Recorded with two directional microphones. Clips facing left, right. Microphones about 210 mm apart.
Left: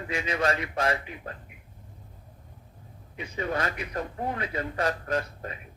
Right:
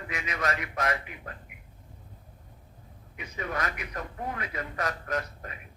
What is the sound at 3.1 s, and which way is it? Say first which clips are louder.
A man's voice: left 4 dB; 30° left (ahead or behind).